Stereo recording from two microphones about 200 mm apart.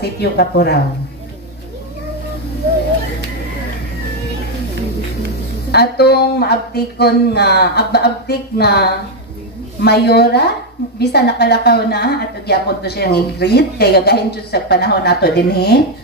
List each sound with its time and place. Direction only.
0.0 s speech: 55° left (ahead or behind)
5.7 s a woman's voice: 55° left (ahead or behind)